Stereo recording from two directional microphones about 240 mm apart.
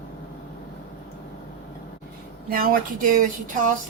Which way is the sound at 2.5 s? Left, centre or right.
Right.